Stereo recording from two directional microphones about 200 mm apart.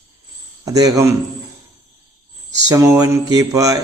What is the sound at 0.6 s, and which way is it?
Speech, 15° right (ahead or behind).